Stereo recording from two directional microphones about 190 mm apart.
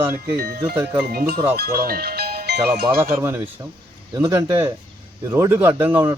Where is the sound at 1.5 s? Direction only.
55° right (ahead or behind).